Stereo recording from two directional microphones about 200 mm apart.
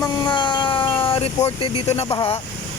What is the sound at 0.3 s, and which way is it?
Cat, 25° left (ahead or behind).